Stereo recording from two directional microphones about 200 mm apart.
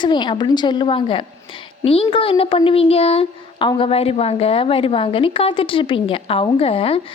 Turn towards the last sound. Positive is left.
turn(degrees=30)  # may be behind; listen again after turning